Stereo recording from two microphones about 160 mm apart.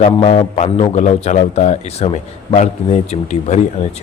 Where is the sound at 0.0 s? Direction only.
40° left (ahead or behind).